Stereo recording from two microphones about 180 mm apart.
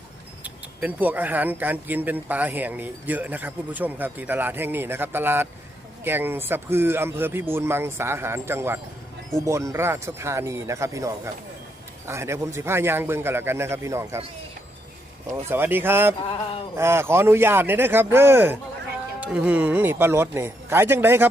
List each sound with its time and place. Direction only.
0.4 s speech: 10° right (ahead or behind)
15.3 s speech: 15° right (ahead or behind)